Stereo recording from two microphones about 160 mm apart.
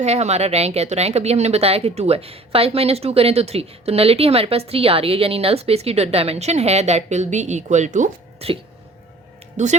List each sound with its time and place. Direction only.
0.0 s a woman's voice: 45° right (ahead or behind)
9.6 s speech: 50° right (ahead or behind)